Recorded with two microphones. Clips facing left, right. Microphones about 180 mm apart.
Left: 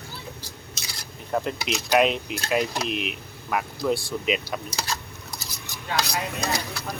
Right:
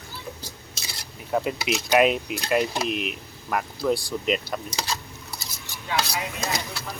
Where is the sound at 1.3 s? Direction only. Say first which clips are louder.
Right 2 dB; 5° right (ahead or behind).